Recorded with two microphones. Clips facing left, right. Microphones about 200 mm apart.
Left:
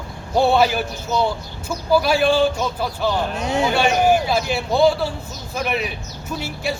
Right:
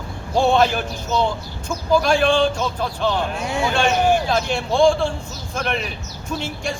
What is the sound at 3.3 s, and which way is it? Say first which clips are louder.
Speech: left 2 dB; 20° left (ahead or behind).